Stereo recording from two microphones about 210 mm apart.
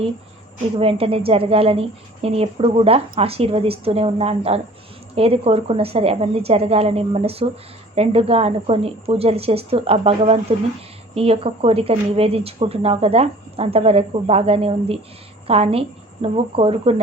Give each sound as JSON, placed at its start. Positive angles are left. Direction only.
{"t": 0.8, "sound": "a woman's voice", "side_deg": -25}